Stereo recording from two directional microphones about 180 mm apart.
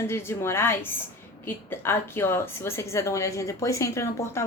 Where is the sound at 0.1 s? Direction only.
15° left (ahead or behind).